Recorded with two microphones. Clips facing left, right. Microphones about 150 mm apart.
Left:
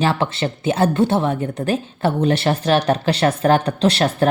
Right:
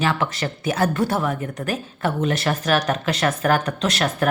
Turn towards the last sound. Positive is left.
turn(degrees=30)  # may be behind; listen again after turning